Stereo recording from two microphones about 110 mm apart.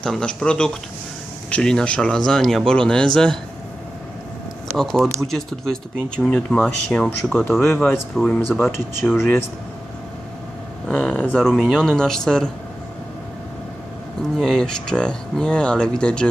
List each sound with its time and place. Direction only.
0.0 s speech: 5° left (ahead or behind)
4.8 s speech: centre (ahead or behind)
7.6 s speech: 20° left (ahead or behind)
10.8 s speech: 10° left (ahead or behind)
14.3 s speech: 5° left (ahead or behind)